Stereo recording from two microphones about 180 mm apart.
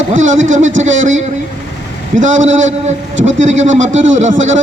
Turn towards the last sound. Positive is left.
turn(degrees=-40)  # may be behind; listen again after turning